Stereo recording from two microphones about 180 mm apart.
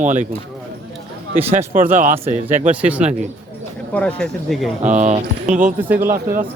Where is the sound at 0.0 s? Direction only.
45° right (ahead or behind).